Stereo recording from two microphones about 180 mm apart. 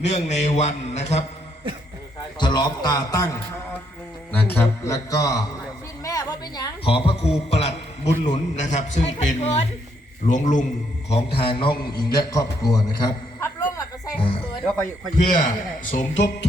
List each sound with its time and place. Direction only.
0.0 s speech: 40° left (ahead or behind)
2.4 s a man's voice: 20° left (ahead or behind)
6.0 s a sound: 20° left (ahead or behind); by 8.1 s 35° left (ahead or behind)
8.2 s a man's voice: 40° left (ahead or behind)
11.3 s a man's voice: 30° left (ahead or behind)
12.1 s a sound: 20° left (ahead or behind)
15.4 s a man's voice: 45° left (ahead or behind)